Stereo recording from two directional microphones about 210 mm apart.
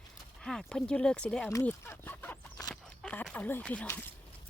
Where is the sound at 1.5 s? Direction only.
10° left (ahead or behind).